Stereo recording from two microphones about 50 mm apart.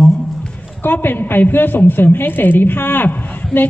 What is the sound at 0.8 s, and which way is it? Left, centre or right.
A woman's voice, left.